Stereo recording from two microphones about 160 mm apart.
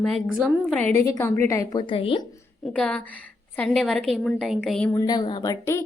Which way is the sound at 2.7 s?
5° left (ahead or behind).